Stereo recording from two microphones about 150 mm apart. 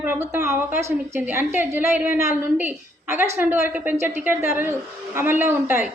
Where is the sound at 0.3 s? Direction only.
15° right (ahead or behind).